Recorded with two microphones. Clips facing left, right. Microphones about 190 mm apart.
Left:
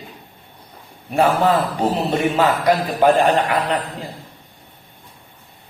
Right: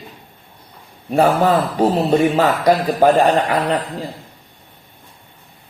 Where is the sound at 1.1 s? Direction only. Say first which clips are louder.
Right 2 dB; 40° right (ahead or behind).